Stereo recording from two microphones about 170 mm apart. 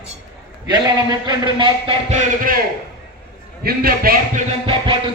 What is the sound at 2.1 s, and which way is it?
Speech, 55° right (ahead or behind).